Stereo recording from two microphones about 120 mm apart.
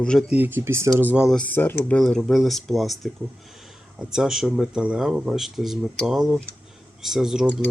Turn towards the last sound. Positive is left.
turn(degrees=-5)  # may be behind; listen again after turning